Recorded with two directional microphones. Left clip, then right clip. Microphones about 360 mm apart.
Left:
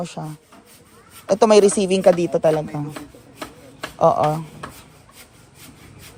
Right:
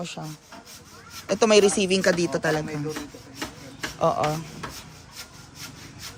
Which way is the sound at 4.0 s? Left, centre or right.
Centre.